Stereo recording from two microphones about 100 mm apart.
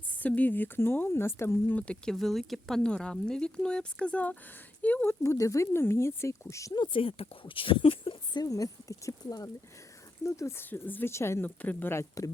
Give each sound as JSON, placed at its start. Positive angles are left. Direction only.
{"t": 0.1, "sound": "speech", "side_deg": 15}
{"t": 5.2, "sound": "speech", "side_deg": 30}
{"t": 6.7, "sound": "speech", "side_deg": 50}
{"t": 7.0, "sound": "speech", "side_deg": 65}
{"t": 10.7, "sound": "speech", "side_deg": 20}